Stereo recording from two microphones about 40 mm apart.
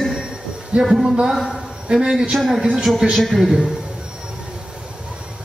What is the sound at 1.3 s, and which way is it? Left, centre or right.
Music, centre.